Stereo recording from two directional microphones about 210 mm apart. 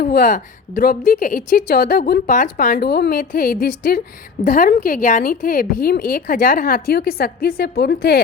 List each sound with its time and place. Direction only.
0.0 s a woman's voice: 40° left (ahead or behind)